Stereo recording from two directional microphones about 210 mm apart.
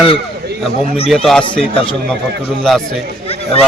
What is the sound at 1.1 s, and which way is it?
Speech, centre (ahead or behind).